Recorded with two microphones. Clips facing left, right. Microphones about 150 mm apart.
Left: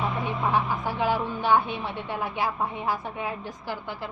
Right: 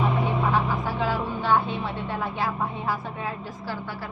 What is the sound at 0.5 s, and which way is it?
A woman's voice, 15° left (ahead or behind).